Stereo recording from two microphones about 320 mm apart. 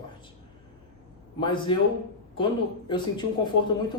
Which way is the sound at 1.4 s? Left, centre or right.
Centre.